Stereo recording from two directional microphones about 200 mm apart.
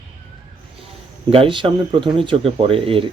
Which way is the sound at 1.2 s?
25° right (ahead or behind).